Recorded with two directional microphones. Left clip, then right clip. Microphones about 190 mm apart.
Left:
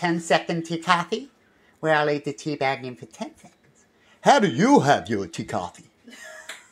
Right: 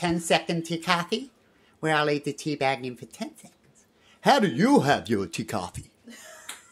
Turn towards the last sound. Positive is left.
turn(degrees=-15)  # may be behind; listen again after turning